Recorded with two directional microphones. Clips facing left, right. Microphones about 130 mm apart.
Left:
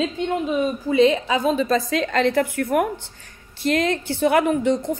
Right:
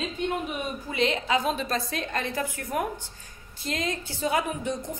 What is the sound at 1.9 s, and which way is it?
A woman's voice, 90° left.